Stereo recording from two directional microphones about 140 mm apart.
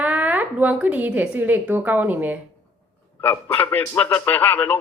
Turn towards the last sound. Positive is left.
turn(degrees=10)  # may be behind; listen again after turning